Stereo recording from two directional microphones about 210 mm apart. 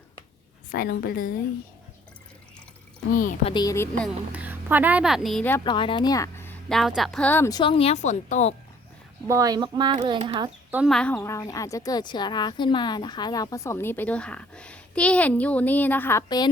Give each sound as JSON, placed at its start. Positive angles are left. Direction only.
{"t": 0.7, "sound": "a woman's voice", "side_deg": 45}
{"t": 3.2, "sound": "speech", "side_deg": 40}
{"t": 3.5, "sound": "a woman's voice", "side_deg": 15}
{"t": 4.3, "sound": "a woman's voice", "side_deg": -10}
{"t": 5.6, "sound": "a woman's voice", "side_deg": 25}
{"t": 9.2, "sound": "speech", "side_deg": -15}
{"t": 10.7, "sound": "a woman's voice", "side_deg": -5}